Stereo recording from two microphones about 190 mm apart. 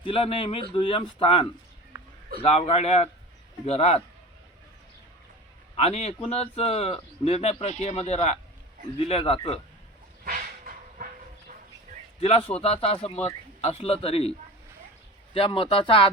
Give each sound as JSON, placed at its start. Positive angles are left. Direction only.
{"t": 0.0, "sound": "a man's voice", "side_deg": 30}
{"t": 5.7, "sound": "a man's voice", "side_deg": 35}
{"t": 10.2, "sound": "train", "side_deg": -45}
{"t": 12.2, "sound": "a man's voice", "side_deg": 30}